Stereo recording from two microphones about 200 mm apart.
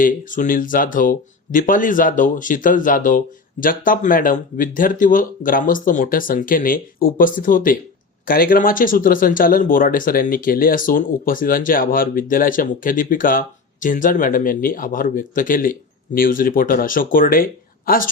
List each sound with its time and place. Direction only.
0.0 s speech: 40° left (ahead or behind)